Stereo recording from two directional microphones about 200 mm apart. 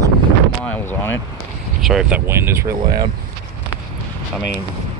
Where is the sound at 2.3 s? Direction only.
10° right (ahead or behind).